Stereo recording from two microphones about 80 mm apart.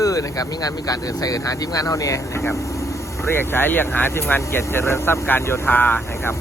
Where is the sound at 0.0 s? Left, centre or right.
Left.